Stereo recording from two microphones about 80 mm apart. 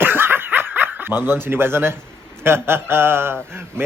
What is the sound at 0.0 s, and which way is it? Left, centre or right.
Snicker, right.